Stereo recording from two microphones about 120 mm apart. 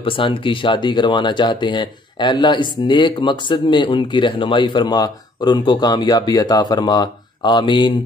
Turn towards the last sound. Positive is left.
turn(degrees=40)  # may be behind; listen again after turning